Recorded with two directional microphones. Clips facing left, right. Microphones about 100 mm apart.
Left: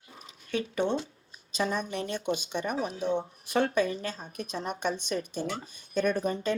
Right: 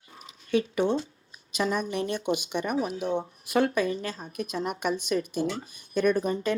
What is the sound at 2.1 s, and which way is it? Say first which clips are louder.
Speech: right 3 dB; 15° right (ahead or behind).